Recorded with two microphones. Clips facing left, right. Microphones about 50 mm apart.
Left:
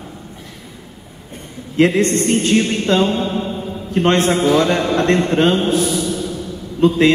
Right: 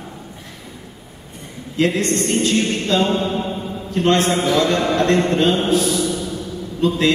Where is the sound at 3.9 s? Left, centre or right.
Left.